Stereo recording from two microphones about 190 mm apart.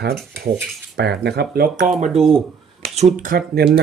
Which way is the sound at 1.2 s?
60° right (ahead or behind).